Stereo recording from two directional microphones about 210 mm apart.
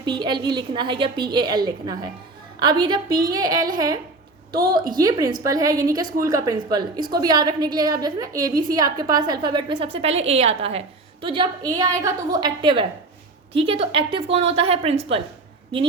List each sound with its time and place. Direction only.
0.0 s a woman's voice: 20° right (ahead or behind)
4.5 s a woman's voice: 45° right (ahead or behind)
4.9 s a woman's voice: 20° right (ahead or behind)